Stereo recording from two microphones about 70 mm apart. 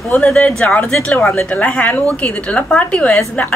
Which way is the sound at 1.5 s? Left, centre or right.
Left.